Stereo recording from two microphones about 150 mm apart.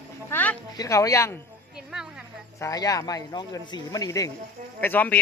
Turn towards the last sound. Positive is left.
turn(degrees=10)  # may be behind; listen again after turning